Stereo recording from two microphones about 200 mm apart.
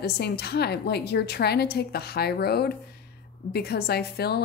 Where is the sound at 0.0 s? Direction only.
55° left (ahead or behind).